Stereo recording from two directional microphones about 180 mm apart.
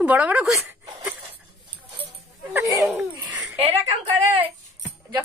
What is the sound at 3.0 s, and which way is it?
Laughter, 15° right (ahead or behind).